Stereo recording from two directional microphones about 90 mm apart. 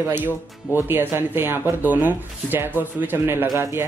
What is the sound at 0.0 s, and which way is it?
Speech, 25° right (ahead or behind).